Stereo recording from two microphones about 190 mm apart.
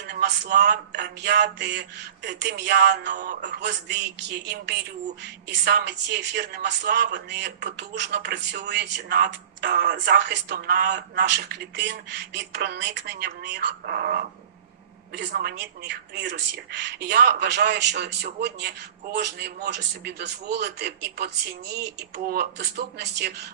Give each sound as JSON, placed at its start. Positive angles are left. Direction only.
{"t": 0.0, "sound": "speech", "side_deg": -60}